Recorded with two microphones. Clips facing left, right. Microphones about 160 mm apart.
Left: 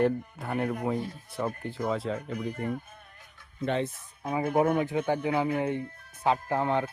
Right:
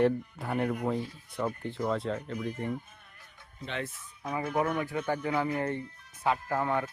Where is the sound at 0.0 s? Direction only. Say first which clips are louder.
Even; centre (ahead or behind).